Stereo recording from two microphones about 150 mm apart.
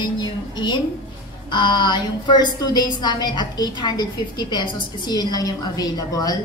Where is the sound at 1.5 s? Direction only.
30° left (ahead or behind).